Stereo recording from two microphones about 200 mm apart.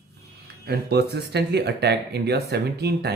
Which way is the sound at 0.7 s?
55° right (ahead or behind).